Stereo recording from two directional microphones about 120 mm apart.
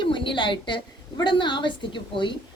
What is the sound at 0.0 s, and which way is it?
A woman's voice, 45° left (ahead or behind).